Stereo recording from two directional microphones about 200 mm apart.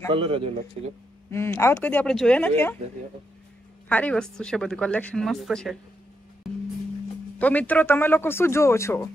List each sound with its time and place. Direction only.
0.1 s a man's voice: 25° right (ahead or behind)
1.3 s speech: 10° left (ahead or behind)
3.9 s speech: 5° left (ahead or behind)
7.3 s speech: 5° left (ahead or behind)